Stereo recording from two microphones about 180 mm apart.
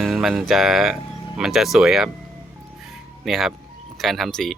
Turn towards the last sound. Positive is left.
turn(degrees=0)  # may be behind; listen again after turning